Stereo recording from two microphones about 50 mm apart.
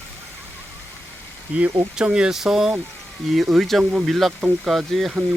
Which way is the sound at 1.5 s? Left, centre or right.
Right.